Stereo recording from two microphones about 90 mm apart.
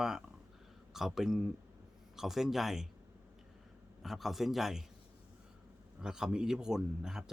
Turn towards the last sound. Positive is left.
turn(degrees=-5)  # may be behind; listen again after turning